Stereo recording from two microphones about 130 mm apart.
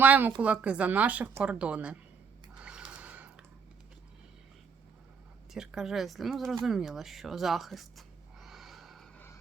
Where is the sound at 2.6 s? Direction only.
10° right (ahead or behind).